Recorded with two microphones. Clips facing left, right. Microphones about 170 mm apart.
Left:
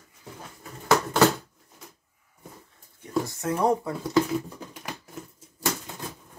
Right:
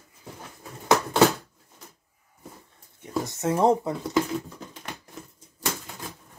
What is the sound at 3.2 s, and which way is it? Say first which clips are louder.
Speech: right 3 dB; 25° right (ahead or behind).